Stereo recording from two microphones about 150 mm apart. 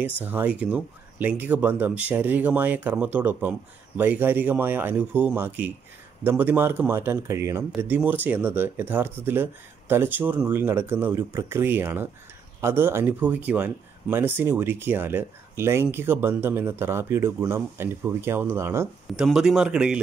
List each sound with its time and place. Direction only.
0.2 s speech: 10° right (ahead or behind)
19.0 s a man's voice: centre (ahead or behind)